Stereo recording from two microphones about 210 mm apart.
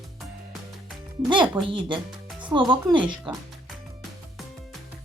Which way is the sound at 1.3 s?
25° right (ahead or behind).